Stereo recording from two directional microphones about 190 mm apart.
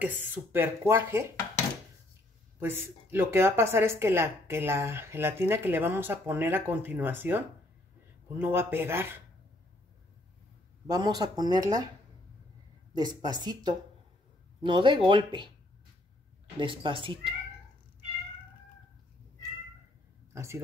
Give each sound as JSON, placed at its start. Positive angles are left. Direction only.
{"t": 0.0, "sound": "a woman's voice", "side_deg": -10}
{"t": 2.6, "sound": "a woman's voice", "side_deg": -10}
{"t": 10.9, "sound": "speech", "side_deg": -20}
{"t": 12.9, "sound": "speech", "side_deg": -20}
{"t": 16.5, "sound": "speech", "side_deg": -25}
{"t": 20.3, "sound": "speech", "side_deg": -15}